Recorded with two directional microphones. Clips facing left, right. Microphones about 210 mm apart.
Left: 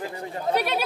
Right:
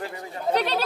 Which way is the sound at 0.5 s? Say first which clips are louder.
Right 1 dB; 10° left (ahead or behind).